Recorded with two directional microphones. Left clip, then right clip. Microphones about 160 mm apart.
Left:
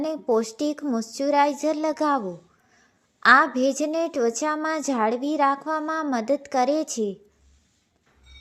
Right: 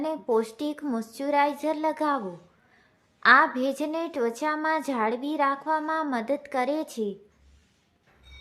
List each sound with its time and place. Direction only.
0.0 s a woman's voice: 25° left (ahead or behind)